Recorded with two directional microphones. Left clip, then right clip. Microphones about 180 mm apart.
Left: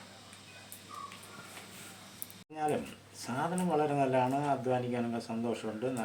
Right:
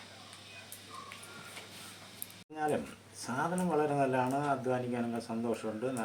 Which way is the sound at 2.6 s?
Centre (ahead or behind).